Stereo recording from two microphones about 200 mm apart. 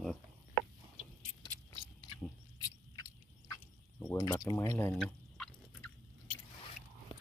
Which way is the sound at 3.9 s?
15° left (ahead or behind).